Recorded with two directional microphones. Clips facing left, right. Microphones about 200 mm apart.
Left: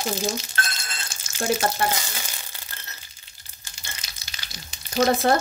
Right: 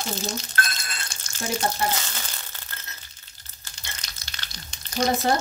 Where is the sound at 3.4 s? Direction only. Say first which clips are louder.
Even; 10° left (ahead or behind).